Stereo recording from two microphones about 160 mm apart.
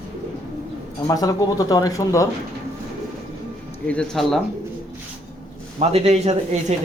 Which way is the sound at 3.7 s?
5° left (ahead or behind).